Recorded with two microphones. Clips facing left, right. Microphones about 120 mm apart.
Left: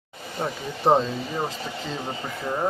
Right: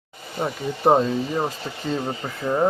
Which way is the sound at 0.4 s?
10° right (ahead or behind).